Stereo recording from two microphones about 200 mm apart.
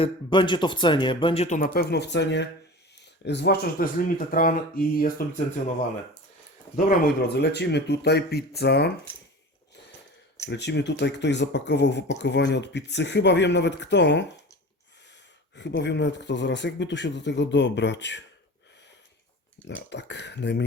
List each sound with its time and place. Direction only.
0.0 s speech: 25° left (ahead or behind)
6.7 s speech: 45° left (ahead or behind)
10.5 s speech: 60° left (ahead or behind)
15.5 s speech: 60° left (ahead or behind)
19.6 s speech: 60° left (ahead or behind)